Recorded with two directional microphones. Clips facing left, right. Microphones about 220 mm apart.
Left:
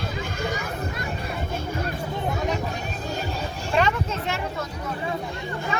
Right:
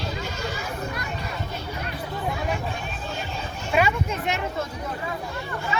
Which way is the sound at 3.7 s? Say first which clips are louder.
Even; 15° right (ahead or behind).